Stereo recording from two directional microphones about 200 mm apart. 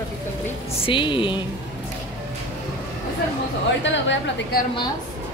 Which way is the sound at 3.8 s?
65° left (ahead or behind).